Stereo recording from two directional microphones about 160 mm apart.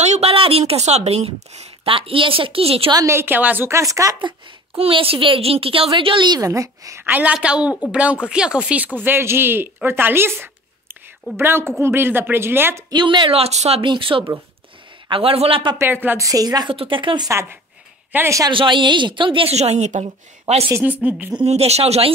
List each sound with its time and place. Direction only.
0.0 s speech: 40° right (ahead or behind)
2.9 s speech: 20° right (ahead or behind)
4.7 s a woman's voice: 35° right (ahead or behind); by 12.8 s 15° right (ahead or behind)
12.9 s speech: 30° right (ahead or behind)
15.8 s a woman's voice: 10° right (ahead or behind); by 17.3 s 30° right (ahead or behind)
17.3 s speech: 15° right (ahead or behind)
18.5 s speech: 30° right (ahead or behind)
20.6 s speech: 10° right (ahead or behind)
21.4 s speech: 40° right (ahead or behind)